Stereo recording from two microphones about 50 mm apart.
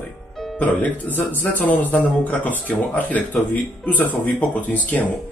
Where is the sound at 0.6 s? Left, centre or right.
Left.